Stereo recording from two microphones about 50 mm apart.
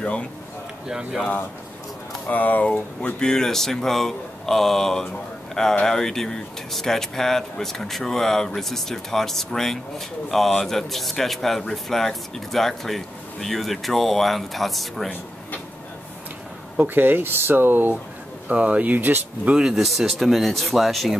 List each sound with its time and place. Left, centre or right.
2.2 s speech: left
3.2 s speech: centre
16.7 s speech: right
18.5 s speech: right
18.9 s speech: right
19.7 s speech: centre